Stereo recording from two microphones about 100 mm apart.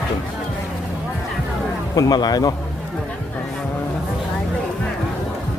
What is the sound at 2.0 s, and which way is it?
Speech, 45° left (ahead or behind).